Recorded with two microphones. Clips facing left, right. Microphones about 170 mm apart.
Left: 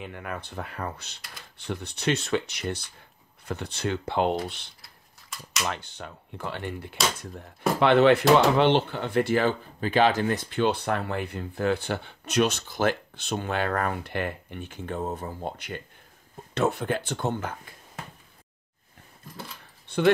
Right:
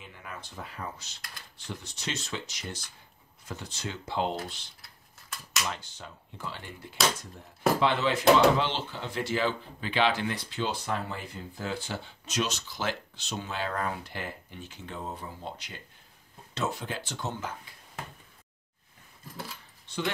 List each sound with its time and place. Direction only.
0.0 s speech: 60° left (ahead or behind)
4.8 s a sound: centre (ahead or behind)
5.6 s speech: 60° left (ahead or behind)
19.9 s speech: 60° left (ahead or behind)